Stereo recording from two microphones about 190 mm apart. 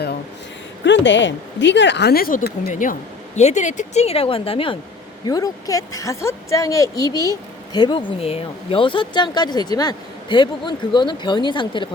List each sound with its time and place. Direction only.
0.9 s a woman's voice: 70° left (ahead or behind); by 11.9 s 25° left (ahead or behind)